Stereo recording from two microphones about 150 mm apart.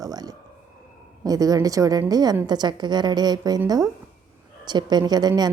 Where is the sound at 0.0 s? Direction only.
25° right (ahead or behind).